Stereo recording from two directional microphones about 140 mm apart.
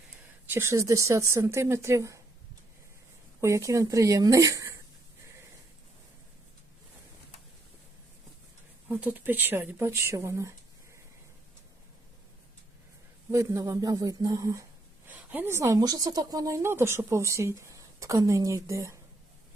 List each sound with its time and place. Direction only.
0.5 s a woman's voice: 20° right (ahead or behind)
3.4 s a woman's voice: 20° right (ahead or behind)
8.9 s speech: 10° right (ahead or behind)
13.3 s a woman's voice: 25° right (ahead or behind)
15.0 s a woman's voice: 15° right (ahead or behind)